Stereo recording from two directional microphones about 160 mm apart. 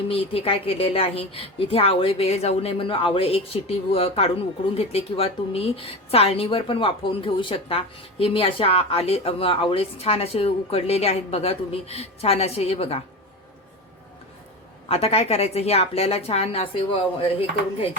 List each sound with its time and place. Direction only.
0.1 s a woman's voice: 35° left (ahead or behind)
14.8 s a woman's voice: 40° left (ahead or behind)